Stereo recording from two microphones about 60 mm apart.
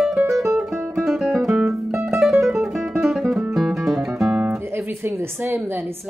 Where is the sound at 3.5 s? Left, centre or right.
Centre.